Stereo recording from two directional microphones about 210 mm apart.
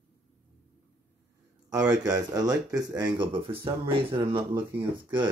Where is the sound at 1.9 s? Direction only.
20° right (ahead or behind).